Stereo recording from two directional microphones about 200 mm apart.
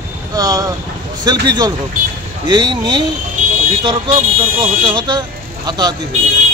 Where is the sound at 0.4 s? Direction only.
15° right (ahead or behind).